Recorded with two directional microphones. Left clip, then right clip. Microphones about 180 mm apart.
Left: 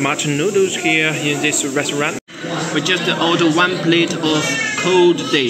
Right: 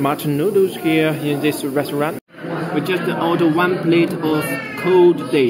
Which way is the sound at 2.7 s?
5° right (ahead or behind).